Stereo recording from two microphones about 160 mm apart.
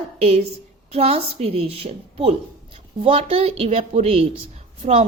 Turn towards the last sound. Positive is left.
turn(degrees=-40)  # may be behind; listen again after turning